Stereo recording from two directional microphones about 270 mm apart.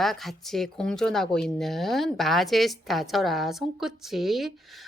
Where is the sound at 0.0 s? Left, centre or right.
Centre.